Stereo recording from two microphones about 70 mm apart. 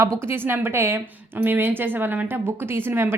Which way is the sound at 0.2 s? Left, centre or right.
Right.